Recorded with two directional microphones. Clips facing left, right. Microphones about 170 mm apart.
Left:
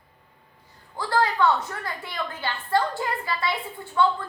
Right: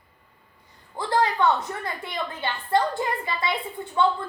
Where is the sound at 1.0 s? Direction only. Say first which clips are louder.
Even; 20° right (ahead or behind).